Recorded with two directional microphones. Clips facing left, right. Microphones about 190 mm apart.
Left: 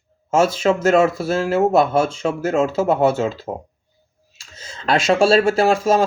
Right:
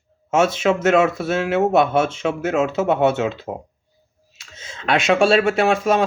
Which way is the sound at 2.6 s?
30° left (ahead or behind).